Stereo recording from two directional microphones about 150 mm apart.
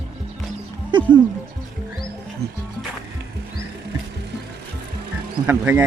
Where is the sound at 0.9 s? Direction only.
30° right (ahead or behind).